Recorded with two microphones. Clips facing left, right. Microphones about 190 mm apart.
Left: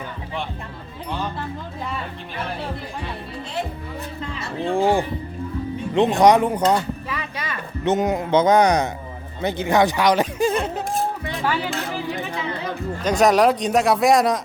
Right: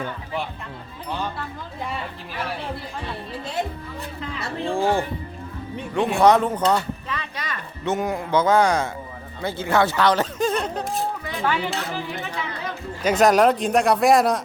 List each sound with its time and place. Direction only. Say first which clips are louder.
4.7 s speech: left 3 dB; 15° left (ahead or behind)
6.7 s a sound: left 1 dB; 10° left (ahead or behind)
7.9 s speech: left 4 dB; 20° left (ahead or behind)
13.0 s speech: even; 5° right (ahead or behind)